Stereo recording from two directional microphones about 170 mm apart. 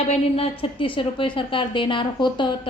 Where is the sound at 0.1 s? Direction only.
35° left (ahead or behind).